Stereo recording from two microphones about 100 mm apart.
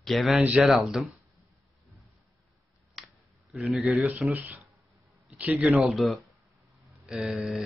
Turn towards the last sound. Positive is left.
turn(degrees=-5)  # may be behind; listen again after turning